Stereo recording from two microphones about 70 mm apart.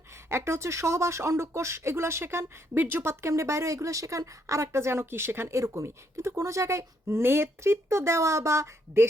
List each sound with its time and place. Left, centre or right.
0.3 s speech: right